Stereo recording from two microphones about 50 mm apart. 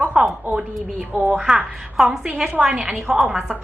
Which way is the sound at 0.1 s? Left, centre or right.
Centre.